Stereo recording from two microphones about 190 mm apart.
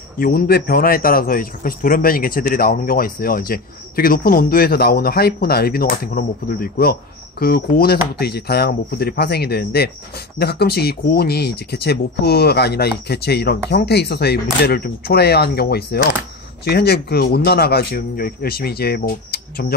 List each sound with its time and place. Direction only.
0.2 s a man's voice: 50° left (ahead or behind)